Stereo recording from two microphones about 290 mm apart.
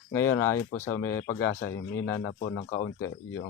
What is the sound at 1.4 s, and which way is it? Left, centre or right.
Speech, left.